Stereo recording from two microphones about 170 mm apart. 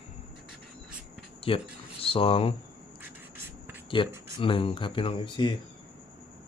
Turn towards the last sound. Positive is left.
turn(degrees=30)  # may be behind; listen again after turning